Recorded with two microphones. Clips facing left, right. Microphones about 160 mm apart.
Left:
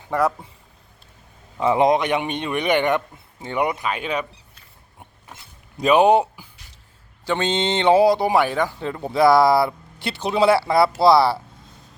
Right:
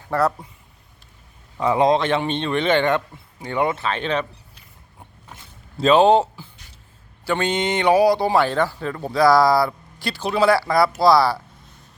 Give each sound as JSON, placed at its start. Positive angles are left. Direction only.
{"t": 0.1, "sound": "a man's voice", "side_deg": 10}
{"t": 1.5, "sound": "a man's voice", "side_deg": 20}
{"t": 5.7, "sound": "speech", "side_deg": 15}